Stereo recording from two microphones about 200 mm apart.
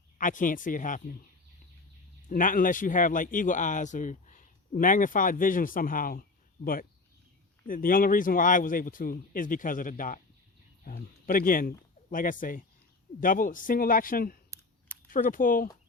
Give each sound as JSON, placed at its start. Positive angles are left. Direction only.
{"t": 0.2, "sound": "speech", "side_deg": 40}
{"t": 2.3, "sound": "speech", "side_deg": 45}
{"t": 7.7, "sound": "a man's voice", "side_deg": 45}